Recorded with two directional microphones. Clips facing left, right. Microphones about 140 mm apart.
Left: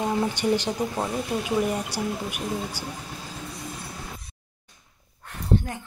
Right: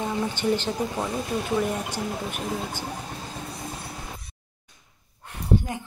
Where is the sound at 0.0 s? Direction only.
15° left (ahead or behind).